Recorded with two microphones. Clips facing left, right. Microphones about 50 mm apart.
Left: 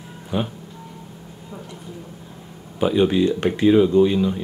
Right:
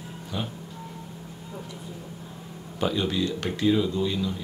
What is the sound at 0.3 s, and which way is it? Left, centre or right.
Speech, left.